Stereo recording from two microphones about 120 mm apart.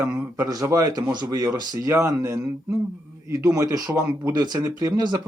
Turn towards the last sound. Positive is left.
turn(degrees=-35)  # may be behind; listen again after turning